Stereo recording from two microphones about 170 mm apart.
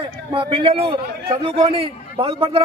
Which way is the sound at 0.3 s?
30° right (ahead or behind).